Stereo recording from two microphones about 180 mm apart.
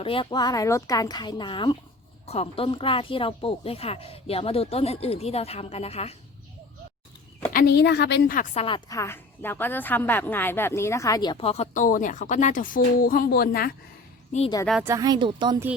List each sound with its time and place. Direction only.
0.0 s a woman's voice: 30° left (ahead or behind)
7.5 s a woman's voice: 65° left (ahead or behind)
8.5 s speech: 30° left (ahead or behind)
8.9 s a woman's voice: 15° left (ahead or behind); by 13.7 s 55° left (ahead or behind)
14.8 s speech: 20° right (ahead or behind)